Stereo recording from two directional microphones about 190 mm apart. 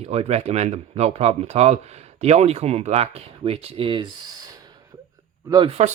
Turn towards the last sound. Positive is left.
turn(degrees=-35)  # may be behind; listen again after turning